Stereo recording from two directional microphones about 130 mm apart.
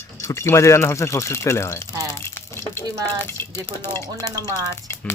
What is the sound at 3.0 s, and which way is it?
Speech, 20° left (ahead or behind).